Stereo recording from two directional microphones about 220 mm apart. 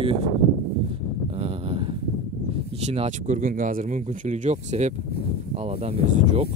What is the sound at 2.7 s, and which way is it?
Speech, 30° right (ahead or behind).